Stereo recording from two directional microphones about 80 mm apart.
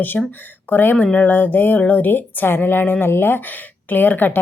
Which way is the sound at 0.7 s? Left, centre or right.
Left.